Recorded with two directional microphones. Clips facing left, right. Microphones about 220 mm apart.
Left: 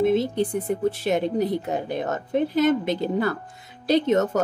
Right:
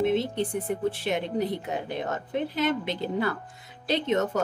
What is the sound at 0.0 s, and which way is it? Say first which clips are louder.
Speech: left 4 dB; 40° left (ahead or behind).